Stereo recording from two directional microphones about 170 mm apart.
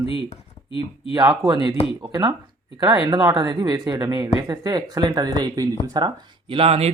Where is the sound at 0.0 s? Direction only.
35° left (ahead or behind).